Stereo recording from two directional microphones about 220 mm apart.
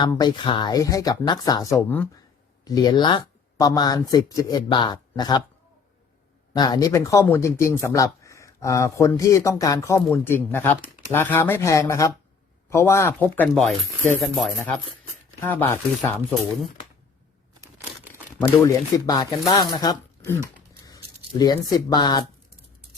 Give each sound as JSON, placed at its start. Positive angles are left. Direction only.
{"t": 0.0, "sound": "speech", "side_deg": 20}
{"t": 6.5, "sound": "speech", "side_deg": 20}
{"t": 18.1, "sound": "speech", "side_deg": 10}